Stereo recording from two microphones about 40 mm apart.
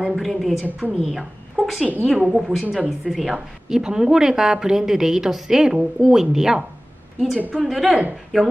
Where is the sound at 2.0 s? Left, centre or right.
Centre.